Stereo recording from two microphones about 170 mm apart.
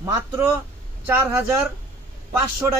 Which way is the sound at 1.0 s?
15° right (ahead or behind).